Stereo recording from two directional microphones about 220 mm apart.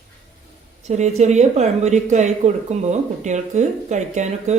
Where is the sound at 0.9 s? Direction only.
30° right (ahead or behind).